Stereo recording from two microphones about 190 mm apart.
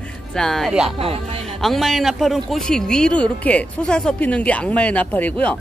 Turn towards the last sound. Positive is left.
turn(degrees=5)  # may be behind; listen again after turning